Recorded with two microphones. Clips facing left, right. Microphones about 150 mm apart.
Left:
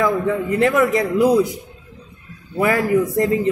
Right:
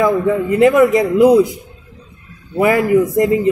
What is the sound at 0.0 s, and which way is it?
Music, 10° right (ahead or behind).